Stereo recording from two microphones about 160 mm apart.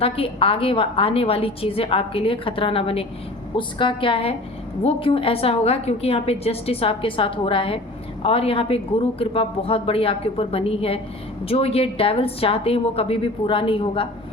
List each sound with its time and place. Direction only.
0.0 s a woman's voice: 35° left (ahead or behind)